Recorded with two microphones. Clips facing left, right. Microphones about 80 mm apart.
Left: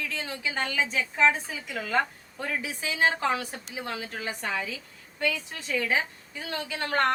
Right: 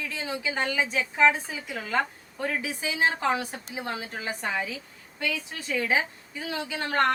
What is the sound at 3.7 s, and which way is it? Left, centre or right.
Speech, right.